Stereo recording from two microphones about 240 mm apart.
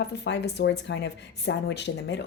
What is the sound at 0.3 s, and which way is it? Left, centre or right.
Speech, left.